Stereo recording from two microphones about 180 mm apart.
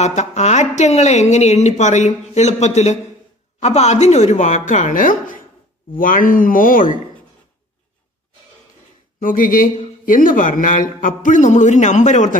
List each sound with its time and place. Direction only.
0.0 s a man's voice: 40° left (ahead or behind)
9.2 s a man's voice: 50° left (ahead or behind)